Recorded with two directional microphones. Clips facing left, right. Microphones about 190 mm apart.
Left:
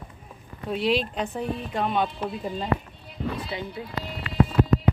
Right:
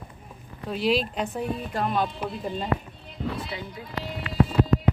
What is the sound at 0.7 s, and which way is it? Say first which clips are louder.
Speech: even; centre (ahead or behind).